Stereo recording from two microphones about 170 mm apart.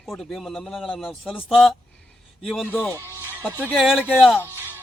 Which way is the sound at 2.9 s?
15° right (ahead or behind).